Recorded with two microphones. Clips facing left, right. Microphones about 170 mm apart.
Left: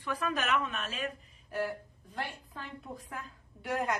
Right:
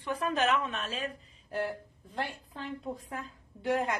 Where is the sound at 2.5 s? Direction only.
25° right (ahead or behind).